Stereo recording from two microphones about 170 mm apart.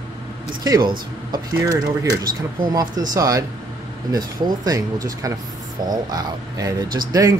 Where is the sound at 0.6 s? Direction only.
25° right (ahead or behind).